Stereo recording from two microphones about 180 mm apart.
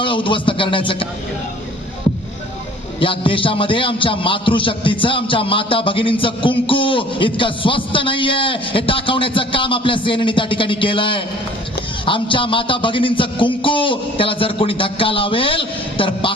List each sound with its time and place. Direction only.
0.0 s a man's voice: 30° left (ahead or behind)
3.0 s a man's voice: 30° left (ahead or behind)